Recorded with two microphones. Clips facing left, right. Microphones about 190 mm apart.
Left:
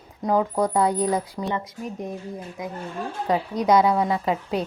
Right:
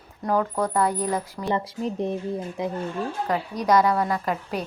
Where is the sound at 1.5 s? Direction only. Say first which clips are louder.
Right 4 dB; 30° right (ahead or behind).